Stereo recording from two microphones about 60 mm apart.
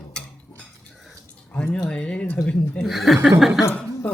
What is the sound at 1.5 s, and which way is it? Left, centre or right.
Speech, left.